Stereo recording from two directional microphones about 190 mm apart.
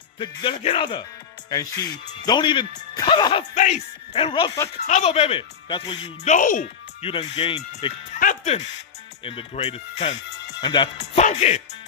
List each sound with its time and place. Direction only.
0.2 s speech: 25° left (ahead or behind)
3.5 s speech: 40° left (ahead or behind)
4.1 s speech: 25° left (ahead or behind)
4.7 s speech: 35° left (ahead or behind)
7.0 s speech: 30° left (ahead or behind)
8.1 s music: 40° left (ahead or behind)
9.2 s speech: 30° left (ahead or behind)
10.6 s speech: 25° left (ahead or behind)
11.0 s speech: 40° left (ahead or behind)